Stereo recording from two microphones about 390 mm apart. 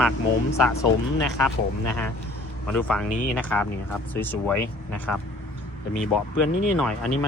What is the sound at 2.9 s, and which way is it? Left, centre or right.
Speech, centre.